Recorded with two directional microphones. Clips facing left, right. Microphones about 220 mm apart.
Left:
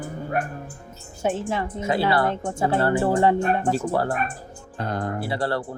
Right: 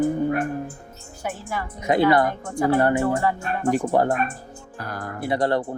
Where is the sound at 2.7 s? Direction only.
15° right (ahead or behind).